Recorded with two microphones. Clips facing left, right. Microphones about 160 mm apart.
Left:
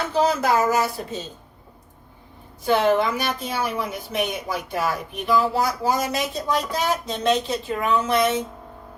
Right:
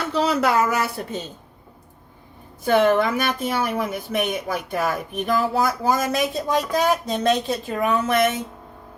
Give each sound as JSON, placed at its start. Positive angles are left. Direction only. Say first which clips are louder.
{"t": 0.1, "sound": "speech", "louder": "even", "side_deg": -70}
{"t": 2.6, "sound": "a woman's voice", "louder": "right 2 dB", "side_deg": -50}